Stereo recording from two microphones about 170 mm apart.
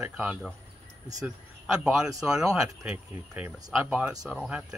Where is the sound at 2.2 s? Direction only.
5° right (ahead or behind).